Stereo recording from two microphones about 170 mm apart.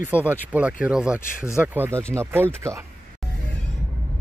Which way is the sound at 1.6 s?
10° right (ahead or behind).